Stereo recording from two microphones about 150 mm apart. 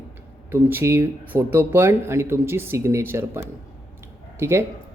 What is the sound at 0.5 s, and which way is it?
Speech, 15° right (ahead or behind).